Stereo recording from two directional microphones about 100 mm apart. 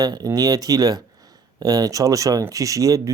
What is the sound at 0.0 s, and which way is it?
Speech, 40° right (ahead or behind).